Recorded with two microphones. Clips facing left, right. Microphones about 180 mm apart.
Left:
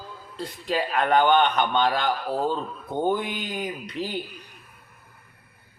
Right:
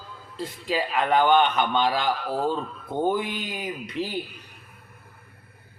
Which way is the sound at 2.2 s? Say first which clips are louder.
Left 1 dB; 40° left (ahead or behind).